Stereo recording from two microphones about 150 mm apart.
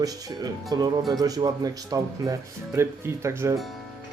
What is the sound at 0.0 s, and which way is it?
Speech, 25° right (ahead or behind).